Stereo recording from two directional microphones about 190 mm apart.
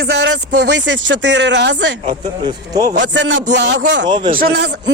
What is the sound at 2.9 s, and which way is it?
Speech, 70° right (ahead or behind).